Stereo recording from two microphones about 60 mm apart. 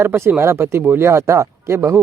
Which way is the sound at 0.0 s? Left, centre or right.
Right.